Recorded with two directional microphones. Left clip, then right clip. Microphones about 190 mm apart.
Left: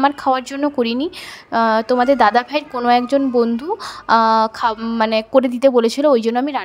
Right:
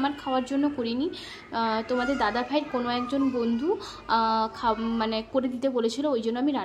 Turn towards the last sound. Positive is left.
turn(degrees=45)  # may be behind; listen again after turning